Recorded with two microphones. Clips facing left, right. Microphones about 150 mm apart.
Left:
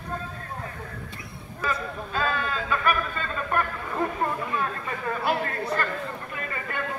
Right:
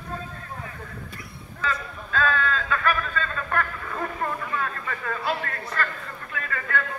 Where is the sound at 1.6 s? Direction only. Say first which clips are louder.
Left 1 dB; 15° left (ahead or behind).